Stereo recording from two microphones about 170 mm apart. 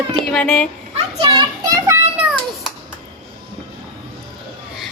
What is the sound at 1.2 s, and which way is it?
Child singing, 25° right (ahead or behind).